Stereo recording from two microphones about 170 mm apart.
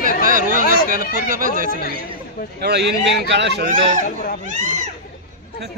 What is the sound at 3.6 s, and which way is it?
Speech, 50° right (ahead or behind).